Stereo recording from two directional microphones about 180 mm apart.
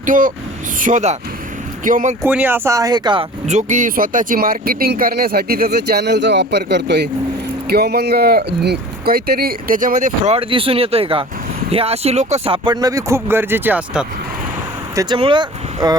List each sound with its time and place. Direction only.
0.0 s speech: 50° right (ahead or behind)
2.2 s speech: 10° right (ahead or behind)
3.4 s speech: 45° right (ahead or behind)
10.3 s speech: 30° right (ahead or behind)
12.6 s speech: 20° right (ahead or behind)
14.9 s speech: 25° right (ahead or behind)